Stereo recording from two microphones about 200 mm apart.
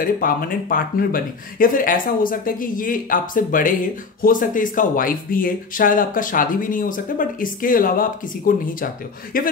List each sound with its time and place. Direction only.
0.0 s speech: 45° left (ahead or behind)